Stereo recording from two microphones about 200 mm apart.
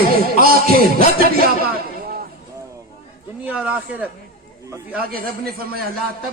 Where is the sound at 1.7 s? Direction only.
50° right (ahead or behind).